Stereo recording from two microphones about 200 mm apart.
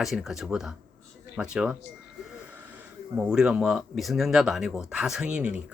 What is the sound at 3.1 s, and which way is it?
Speech, 5° right (ahead or behind).